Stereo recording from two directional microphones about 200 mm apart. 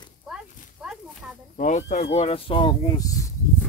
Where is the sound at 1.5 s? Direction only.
35° left (ahead or behind); by 3.1 s 20° left (ahead or behind).